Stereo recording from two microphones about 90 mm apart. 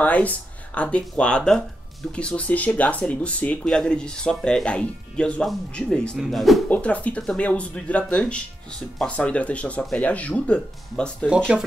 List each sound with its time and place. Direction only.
0.0 s speech: 15° left (ahead or behind)
6.1 s speech: centre (ahead or behind)
6.7 s speech: 15° left (ahead or behind)
11.2 s speech: 10° right (ahead or behind)